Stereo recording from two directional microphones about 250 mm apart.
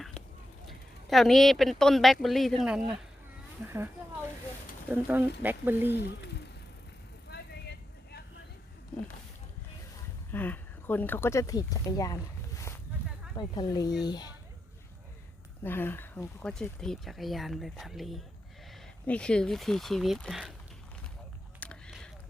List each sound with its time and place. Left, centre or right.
0.7 s speech: centre
4.9 s speech: centre
5.9 s speech: left
7.3 s vehicle: left
10.3 s speech: centre
15.6 s speech: centre
21.6 s a sound: centre